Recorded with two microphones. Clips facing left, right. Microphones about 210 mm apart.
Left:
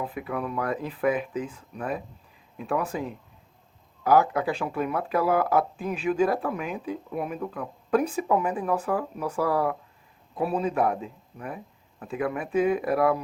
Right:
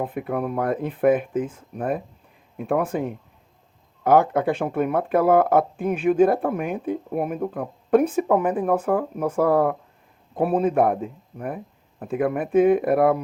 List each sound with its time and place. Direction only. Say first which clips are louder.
0.0 s speech: right 5 dB; 50° right (ahead or behind)